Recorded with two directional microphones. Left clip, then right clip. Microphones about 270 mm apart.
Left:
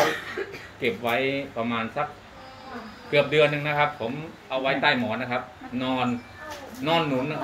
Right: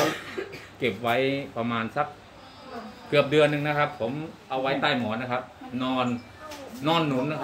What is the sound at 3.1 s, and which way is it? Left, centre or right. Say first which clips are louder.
Speech: left 1 dB; right.